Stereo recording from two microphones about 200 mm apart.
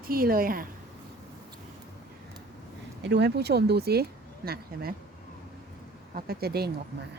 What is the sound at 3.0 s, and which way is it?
Speech, 55° right (ahead or behind).